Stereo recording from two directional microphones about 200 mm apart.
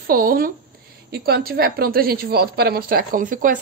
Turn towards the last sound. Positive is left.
turn(degrees=-40)  # may be behind; listen again after turning